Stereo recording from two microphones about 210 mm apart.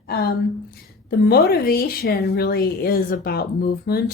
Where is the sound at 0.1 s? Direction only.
50° left (ahead or behind).